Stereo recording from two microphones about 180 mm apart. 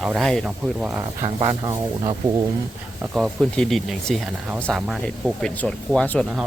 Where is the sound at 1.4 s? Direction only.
20° right (ahead or behind).